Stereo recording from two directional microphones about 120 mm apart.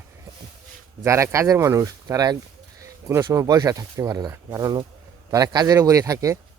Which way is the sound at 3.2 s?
30° right (ahead or behind).